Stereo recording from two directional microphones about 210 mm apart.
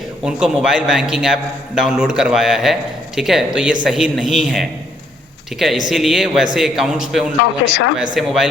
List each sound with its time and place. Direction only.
0.3 s a man's voice: 5° right (ahead or behind)